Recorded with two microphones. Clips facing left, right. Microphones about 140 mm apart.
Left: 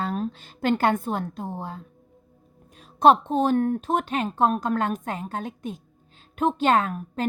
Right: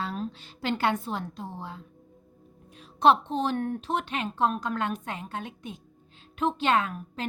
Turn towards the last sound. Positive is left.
turn(degrees=45)  # may be behind; listen again after turning